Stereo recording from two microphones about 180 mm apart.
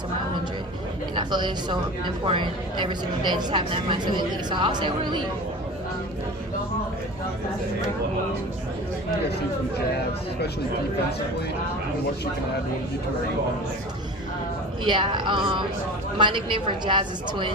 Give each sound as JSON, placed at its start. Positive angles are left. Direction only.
{"t": 1.1, "sound": "speech", "side_deg": -25}
{"t": 14.8, "sound": "speech", "side_deg": -25}